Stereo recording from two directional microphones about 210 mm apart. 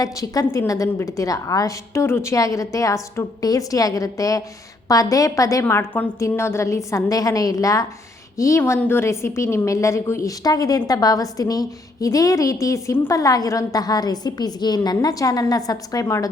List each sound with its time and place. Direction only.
0.0 s a woman's voice: 15° left (ahead or behind)